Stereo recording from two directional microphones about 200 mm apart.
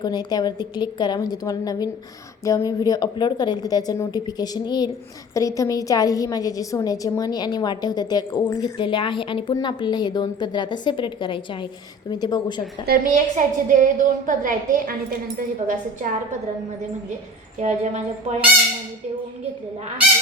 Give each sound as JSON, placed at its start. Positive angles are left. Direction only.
{"t": 0.0, "sound": "a woman's voice", "side_deg": 20}
{"t": 12.8, "sound": "a woman's voice", "side_deg": -45}
{"t": 17.6, "sound": "a woman's voice", "side_deg": -35}